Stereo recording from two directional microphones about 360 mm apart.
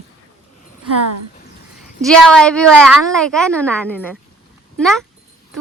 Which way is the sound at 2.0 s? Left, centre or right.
Centre.